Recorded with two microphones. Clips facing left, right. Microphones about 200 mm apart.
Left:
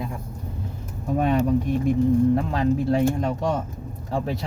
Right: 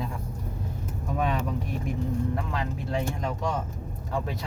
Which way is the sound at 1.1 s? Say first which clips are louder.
Left 8 dB; 40° left (ahead or behind).